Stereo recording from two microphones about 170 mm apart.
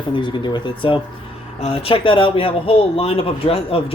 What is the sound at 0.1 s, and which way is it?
Speech, 30° left (ahead or behind).